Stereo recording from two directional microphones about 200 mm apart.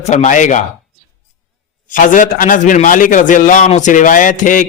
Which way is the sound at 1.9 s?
40° left (ahead or behind).